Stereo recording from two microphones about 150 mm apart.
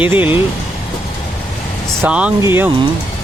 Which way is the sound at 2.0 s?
10° right (ahead or behind).